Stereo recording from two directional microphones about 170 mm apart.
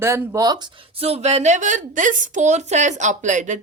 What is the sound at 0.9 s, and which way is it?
A woman's voice, 35° right (ahead or behind).